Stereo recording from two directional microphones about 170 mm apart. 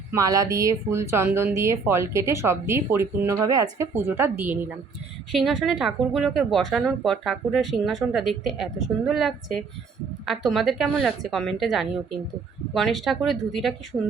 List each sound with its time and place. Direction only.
0.1 s speech: 20° right (ahead or behind)
5.3 s speech: centre (ahead or behind)